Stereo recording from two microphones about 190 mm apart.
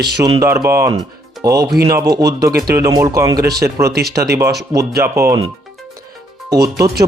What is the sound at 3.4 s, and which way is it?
Speech, 55° right (ahead or behind).